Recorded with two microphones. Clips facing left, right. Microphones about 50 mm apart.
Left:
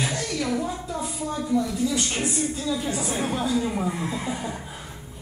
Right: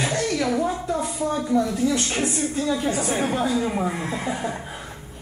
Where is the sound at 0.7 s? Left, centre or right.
Right.